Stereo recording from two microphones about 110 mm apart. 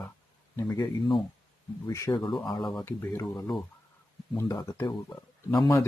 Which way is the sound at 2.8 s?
20° left (ahead or behind).